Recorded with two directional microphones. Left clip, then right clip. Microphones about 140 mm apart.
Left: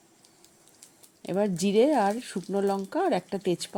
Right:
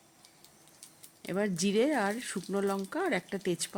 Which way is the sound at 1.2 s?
5° left (ahead or behind).